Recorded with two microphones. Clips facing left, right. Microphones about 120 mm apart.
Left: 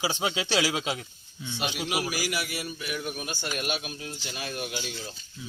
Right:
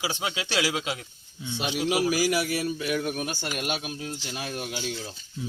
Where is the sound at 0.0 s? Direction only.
25° left (ahead or behind).